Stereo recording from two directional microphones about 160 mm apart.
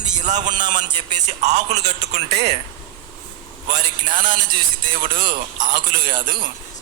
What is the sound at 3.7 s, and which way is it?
Speech, 30° right (ahead or behind).